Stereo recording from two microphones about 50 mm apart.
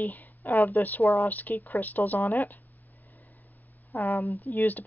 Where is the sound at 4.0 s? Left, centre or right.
Left.